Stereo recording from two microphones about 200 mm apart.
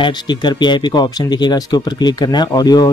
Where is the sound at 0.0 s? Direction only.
20° left (ahead or behind).